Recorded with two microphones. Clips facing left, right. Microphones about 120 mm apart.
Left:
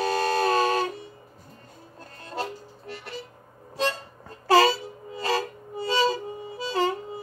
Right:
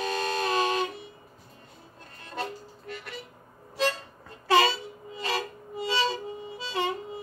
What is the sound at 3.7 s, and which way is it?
Harmonica, 35° left (ahead or behind).